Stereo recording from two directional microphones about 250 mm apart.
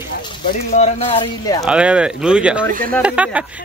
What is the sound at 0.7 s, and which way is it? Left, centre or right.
Speech, left.